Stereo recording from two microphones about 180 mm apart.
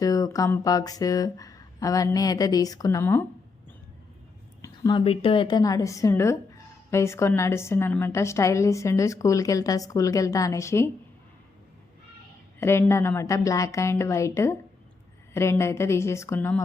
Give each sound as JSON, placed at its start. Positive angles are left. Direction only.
{"t": 0.0, "sound": "speech", "side_deg": 20}
{"t": 4.6, "sound": "a woman's voice", "side_deg": 20}
{"t": 12.5, "sound": "a sound", "side_deg": 15}
{"t": 12.9, "sound": "a woman's voice", "side_deg": 15}